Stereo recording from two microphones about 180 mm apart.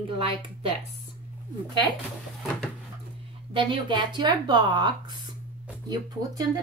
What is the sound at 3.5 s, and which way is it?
Speech, 25° right (ahead or behind).